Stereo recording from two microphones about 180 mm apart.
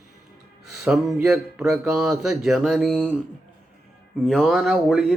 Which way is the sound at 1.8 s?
Centre (ahead or behind).